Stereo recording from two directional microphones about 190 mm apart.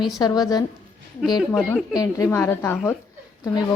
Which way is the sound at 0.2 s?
20° left (ahead or behind).